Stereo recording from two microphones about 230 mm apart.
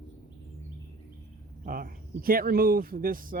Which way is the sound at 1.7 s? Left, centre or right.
Right.